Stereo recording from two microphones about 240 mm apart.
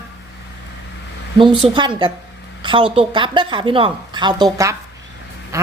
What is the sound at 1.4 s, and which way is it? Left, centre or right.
A woman's voice, right.